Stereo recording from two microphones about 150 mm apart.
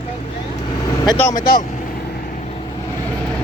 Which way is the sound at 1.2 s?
20° left (ahead or behind).